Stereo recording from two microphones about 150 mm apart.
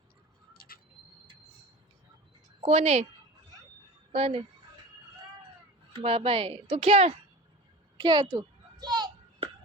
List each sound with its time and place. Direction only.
0.5 s bird: 85° left
2.6 s a woman's voice: 45° right (ahead or behind)
4.1 s a woman's voice: 40° right (ahead or behind)
5.9 s speech: 40° right (ahead or behind)
7.9 s a sound: 30° right (ahead or behind)